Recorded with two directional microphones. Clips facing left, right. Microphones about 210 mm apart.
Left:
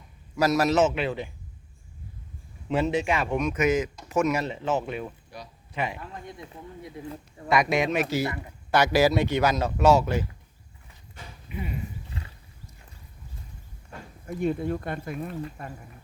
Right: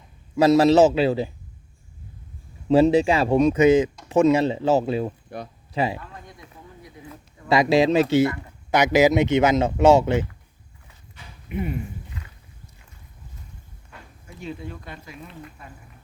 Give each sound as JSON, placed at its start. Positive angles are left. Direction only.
{"t": 0.3, "sound": "a man's voice", "side_deg": -30}
{"t": 2.6, "sound": "a man's voice", "side_deg": -35}
{"t": 6.2, "sound": "speech", "side_deg": 25}
{"t": 7.4, "sound": "speech", "side_deg": -30}
{"t": 14.3, "sound": "speech", "side_deg": 50}